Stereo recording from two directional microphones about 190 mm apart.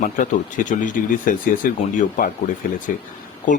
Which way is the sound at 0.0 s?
45° left (ahead or behind).